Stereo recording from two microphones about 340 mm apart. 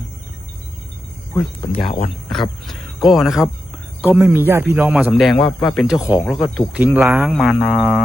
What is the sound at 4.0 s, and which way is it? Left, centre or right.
Speech, centre.